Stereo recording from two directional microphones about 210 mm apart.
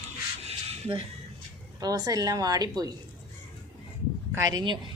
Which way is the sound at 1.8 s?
15° right (ahead or behind).